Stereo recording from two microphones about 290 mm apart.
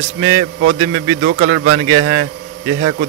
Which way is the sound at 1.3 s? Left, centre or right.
Right.